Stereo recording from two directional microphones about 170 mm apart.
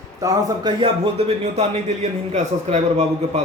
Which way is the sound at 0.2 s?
20° right (ahead or behind).